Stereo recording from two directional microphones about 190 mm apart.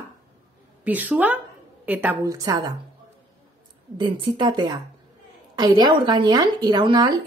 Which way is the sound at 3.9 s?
25° right (ahead or behind).